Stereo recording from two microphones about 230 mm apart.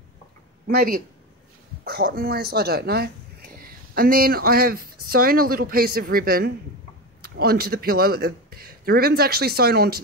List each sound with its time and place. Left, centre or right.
0.7 s speech: right